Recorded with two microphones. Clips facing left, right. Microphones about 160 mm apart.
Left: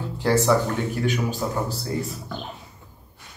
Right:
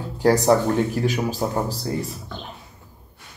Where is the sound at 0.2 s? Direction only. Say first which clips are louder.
Right 3 dB; 40° right (ahead or behind).